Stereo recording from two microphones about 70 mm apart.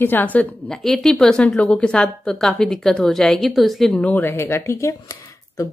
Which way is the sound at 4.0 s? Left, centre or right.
Left.